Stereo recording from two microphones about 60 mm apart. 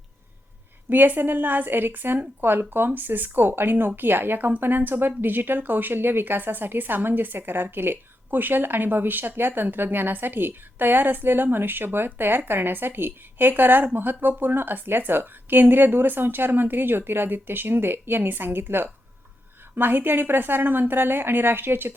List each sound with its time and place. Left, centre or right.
0.9 s speech: right